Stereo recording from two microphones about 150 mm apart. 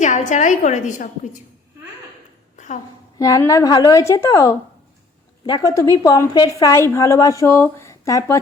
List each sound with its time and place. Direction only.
0.0 s a woman's voice: 55° left (ahead or behind)
2.6 s a sound: 55° left (ahead or behind)
3.2 s a woman's voice: 20° left (ahead or behind)
5.7 s a woman's voice: 20° left (ahead or behind)